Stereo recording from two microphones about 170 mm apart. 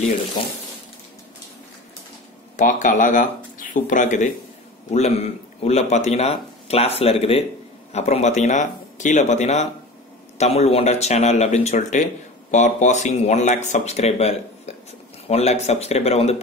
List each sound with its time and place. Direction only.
2.5 s speech: 50° left (ahead or behind)